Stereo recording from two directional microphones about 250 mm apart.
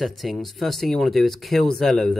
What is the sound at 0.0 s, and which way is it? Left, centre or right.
Speech, centre.